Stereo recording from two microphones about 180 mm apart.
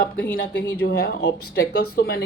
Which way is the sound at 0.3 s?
80° left.